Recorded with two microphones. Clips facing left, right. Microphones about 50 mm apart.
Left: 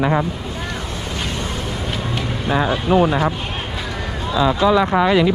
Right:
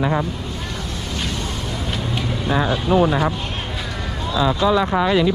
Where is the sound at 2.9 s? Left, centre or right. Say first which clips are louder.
Left 1 dB; left.